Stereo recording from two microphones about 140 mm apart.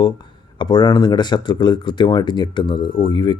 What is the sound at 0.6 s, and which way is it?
A man's voice, 30° left (ahead or behind).